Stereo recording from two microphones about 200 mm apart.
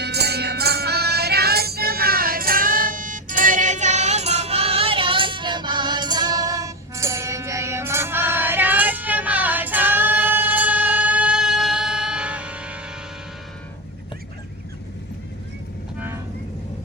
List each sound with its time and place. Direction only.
0.0 s music: 55° right (ahead or behind); by 12.9 s 5° right (ahead or behind)
16.0 s train: 10° right (ahead or behind)